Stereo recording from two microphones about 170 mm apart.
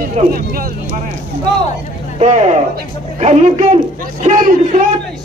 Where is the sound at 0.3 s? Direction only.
60° right (ahead or behind).